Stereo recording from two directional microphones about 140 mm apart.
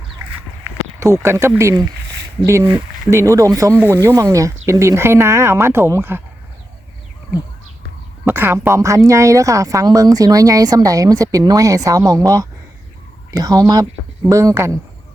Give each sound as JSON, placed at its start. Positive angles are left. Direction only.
{"t": 0.9, "sound": "speech", "side_deg": -20}
{"t": 8.2, "sound": "speech", "side_deg": -15}